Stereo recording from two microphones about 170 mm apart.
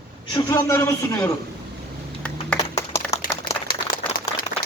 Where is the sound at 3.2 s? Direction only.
55° left (ahead or behind).